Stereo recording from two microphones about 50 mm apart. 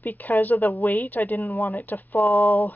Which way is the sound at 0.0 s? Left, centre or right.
Left.